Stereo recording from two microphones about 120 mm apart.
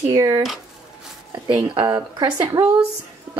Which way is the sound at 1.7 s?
45° right (ahead or behind).